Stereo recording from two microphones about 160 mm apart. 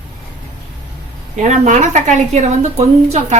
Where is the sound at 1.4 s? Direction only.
50° right (ahead or behind).